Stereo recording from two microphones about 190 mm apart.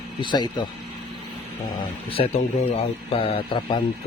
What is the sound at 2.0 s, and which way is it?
A man's voice, 30° left (ahead or behind).